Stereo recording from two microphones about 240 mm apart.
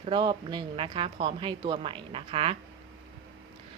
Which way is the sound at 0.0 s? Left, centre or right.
Centre.